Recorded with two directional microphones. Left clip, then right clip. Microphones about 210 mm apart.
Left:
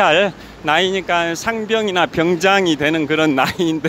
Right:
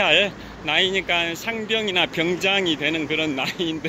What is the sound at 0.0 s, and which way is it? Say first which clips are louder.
A man's voice: left 5 dB; 30° left (ahead or behind).